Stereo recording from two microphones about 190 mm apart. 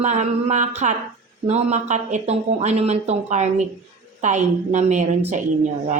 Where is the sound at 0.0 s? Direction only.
35° right (ahead or behind).